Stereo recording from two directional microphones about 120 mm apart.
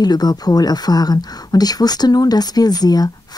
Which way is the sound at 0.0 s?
35° left (ahead or behind).